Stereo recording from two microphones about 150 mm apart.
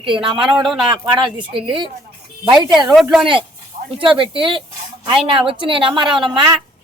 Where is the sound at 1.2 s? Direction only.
35° right (ahead or behind).